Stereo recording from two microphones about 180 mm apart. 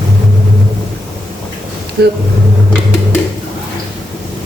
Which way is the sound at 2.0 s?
65° right (ahead or behind).